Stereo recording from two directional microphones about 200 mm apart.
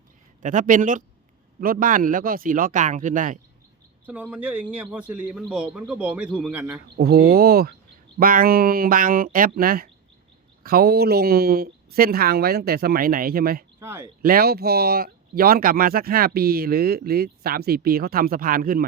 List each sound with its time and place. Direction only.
0.4 s speech: 40° right (ahead or behind)
4.0 s a man's voice: 5° right (ahead or behind)
6.9 s speech: 50° right (ahead or behind)
13.7 s speech: 10° right (ahead or behind)
14.2 s speech: 45° right (ahead or behind)